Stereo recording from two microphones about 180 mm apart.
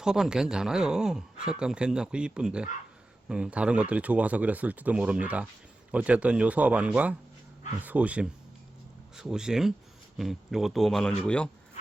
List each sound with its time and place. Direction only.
0.0 s speech: 5° right (ahead or behind)